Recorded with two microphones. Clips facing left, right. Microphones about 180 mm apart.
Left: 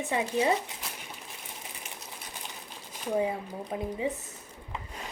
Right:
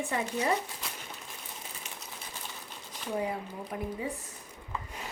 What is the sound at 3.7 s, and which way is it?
Speech, 25° left (ahead or behind).